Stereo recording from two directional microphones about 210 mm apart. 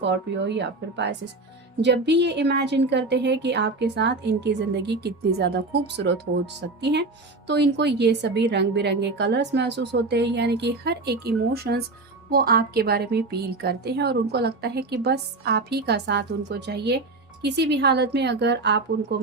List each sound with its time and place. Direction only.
0.0 s a woman's voice: 55° right (ahead or behind)